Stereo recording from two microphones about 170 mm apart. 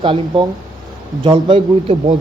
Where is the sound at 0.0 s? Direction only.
25° right (ahead or behind).